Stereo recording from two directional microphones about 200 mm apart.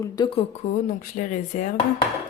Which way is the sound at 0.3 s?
35° left (ahead or behind).